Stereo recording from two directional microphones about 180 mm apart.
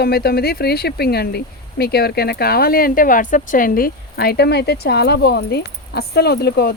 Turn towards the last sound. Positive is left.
turn(degrees=65)  # may be behind; listen again after turning